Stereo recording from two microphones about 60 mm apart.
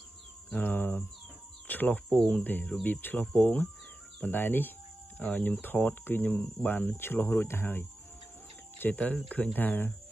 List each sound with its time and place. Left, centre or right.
0.7 s speech: left